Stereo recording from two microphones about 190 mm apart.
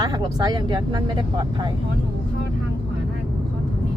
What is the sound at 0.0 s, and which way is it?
Speech, 20° right (ahead or behind).